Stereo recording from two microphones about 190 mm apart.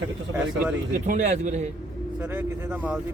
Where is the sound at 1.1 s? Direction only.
40° right (ahead or behind).